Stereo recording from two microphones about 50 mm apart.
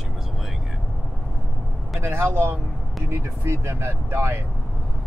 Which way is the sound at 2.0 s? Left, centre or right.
Right.